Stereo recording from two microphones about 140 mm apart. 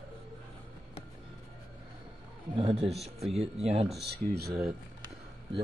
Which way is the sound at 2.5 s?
45° right (ahead or behind).